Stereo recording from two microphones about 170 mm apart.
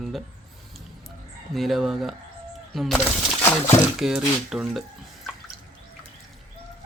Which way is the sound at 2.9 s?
15° left (ahead or behind).